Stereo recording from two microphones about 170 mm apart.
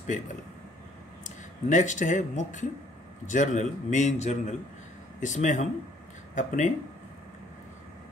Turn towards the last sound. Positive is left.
turn(degrees=45)  # may be behind; listen again after turning